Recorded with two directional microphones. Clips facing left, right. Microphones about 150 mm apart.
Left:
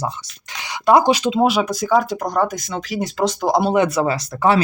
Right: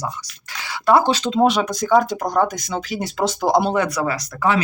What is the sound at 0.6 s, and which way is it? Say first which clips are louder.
Speech: left 2 dB; 20° left (ahead or behind).